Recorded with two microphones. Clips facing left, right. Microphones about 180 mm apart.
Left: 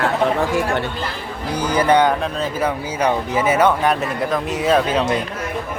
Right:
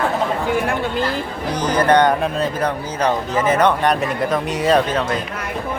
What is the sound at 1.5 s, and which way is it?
Speech, 10° left (ahead or behind).